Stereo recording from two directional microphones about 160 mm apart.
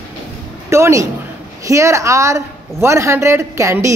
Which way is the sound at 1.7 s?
20° right (ahead or behind).